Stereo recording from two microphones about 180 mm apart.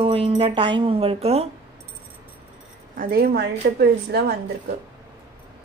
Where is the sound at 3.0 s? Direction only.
55° right (ahead or behind).